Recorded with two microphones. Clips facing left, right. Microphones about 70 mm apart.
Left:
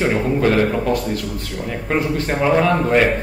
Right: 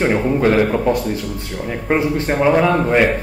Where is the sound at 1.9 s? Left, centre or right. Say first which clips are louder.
Right 3 dB; centre.